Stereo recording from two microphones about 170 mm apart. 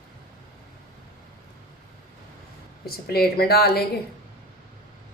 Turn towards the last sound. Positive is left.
turn(degrees=65)  # may be behind; listen again after turning